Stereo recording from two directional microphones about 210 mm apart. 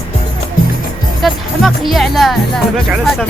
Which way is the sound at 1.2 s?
Centre (ahead or behind).